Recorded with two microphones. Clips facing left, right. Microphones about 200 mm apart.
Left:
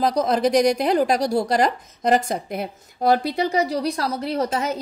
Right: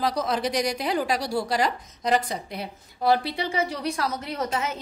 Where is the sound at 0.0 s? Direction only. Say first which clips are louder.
Left 6 dB; 40° left (ahead or behind).